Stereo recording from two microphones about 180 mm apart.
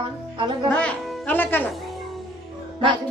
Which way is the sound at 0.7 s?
5° left (ahead or behind).